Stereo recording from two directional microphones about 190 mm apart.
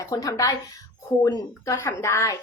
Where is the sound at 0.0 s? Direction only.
15° left (ahead or behind).